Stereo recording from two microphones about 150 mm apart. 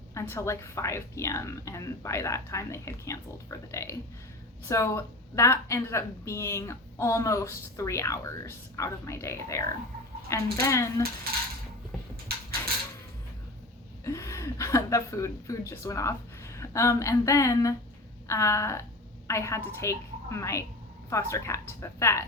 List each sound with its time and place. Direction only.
0.1 s a woman's voice: 20° left (ahead or behind)
12.6 s a sound: 15° left (ahead or behind)
14.0 s a woman's voice: 20° left (ahead or behind)